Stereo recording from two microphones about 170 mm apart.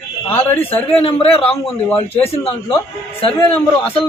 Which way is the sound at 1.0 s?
35° left (ahead or behind).